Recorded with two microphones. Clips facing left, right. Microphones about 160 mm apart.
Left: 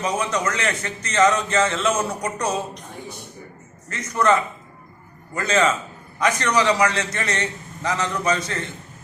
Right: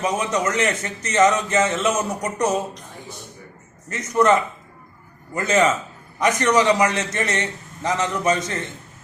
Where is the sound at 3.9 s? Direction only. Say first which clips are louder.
Right 2 dB; 20° right (ahead or behind).